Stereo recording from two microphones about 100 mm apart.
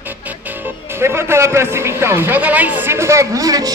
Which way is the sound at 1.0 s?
25° right (ahead or behind).